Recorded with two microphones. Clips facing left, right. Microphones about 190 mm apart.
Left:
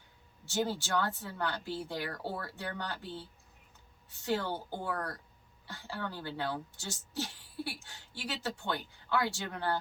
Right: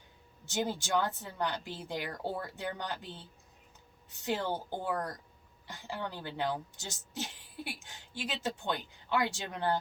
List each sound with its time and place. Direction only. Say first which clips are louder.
0.4 s a woman's voice: left 1 dB; 15° right (ahead or behind)